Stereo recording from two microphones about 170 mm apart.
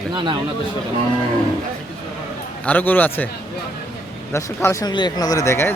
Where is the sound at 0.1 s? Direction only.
25° right (ahead or behind).